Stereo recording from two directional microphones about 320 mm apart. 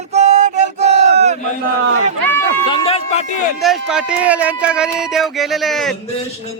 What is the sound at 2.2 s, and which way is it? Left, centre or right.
Chatter, centre.